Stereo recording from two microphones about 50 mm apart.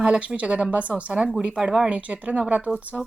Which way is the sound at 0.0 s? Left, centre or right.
Right.